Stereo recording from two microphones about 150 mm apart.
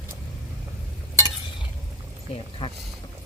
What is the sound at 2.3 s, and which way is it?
Speech, 35° left (ahead or behind).